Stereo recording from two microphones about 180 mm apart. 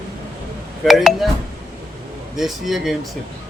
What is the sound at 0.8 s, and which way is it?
Speech, centre (ahead or behind).